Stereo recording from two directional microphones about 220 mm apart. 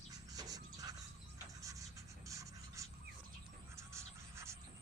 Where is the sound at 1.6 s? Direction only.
15° right (ahead or behind).